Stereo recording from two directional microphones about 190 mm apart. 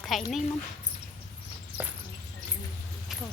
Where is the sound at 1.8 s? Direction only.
10° right (ahead or behind).